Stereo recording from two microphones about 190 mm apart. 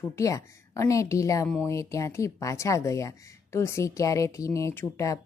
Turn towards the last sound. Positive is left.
turn(degrees=15)  # may be behind; listen again after turning